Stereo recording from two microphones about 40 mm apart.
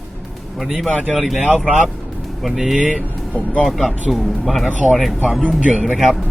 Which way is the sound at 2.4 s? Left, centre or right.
Centre.